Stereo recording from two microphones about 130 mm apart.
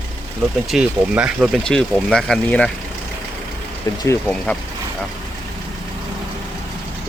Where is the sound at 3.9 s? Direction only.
25° left (ahead or behind).